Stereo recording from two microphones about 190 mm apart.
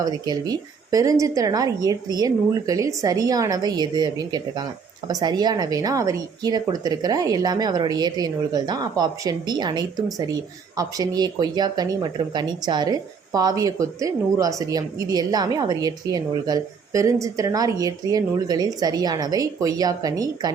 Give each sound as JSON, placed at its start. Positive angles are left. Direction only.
{"t": 0.0, "sound": "a woman's voice", "side_deg": -20}